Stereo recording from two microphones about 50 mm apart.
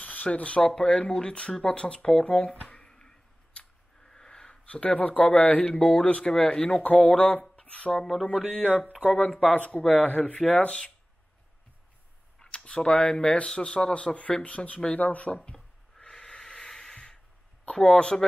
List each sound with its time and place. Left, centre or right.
0.0 s a sound: left
0.6 s speech: centre
2.7 s scissors: centre
5.8 s speech: centre
6.0 s speech: left
7.9 s a sound: centre
8.5 s speech: right
9.3 s speech: centre
12.4 s speech: left
15.5 s a sound: centre
17.6 s speech: centre